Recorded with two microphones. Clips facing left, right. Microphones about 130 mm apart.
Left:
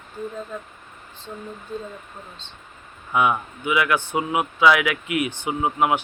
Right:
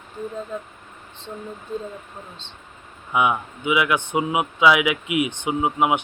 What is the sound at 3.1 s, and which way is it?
Speech, 15° right (ahead or behind).